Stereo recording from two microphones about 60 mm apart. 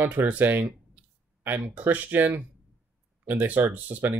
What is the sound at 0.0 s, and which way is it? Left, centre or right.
Speech, right.